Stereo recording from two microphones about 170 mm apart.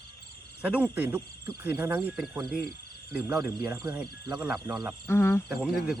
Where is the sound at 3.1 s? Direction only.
15° right (ahead or behind).